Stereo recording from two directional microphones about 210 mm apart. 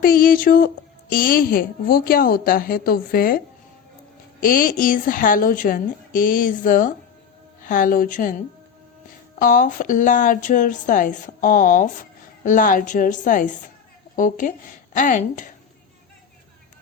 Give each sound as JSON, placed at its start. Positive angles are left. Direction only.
{"t": 0.0, "sound": "a woman's voice", "side_deg": 45}
{"t": 9.4, "sound": "speech", "side_deg": 40}